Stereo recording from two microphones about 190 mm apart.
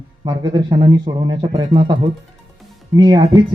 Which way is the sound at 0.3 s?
20° right (ahead or behind).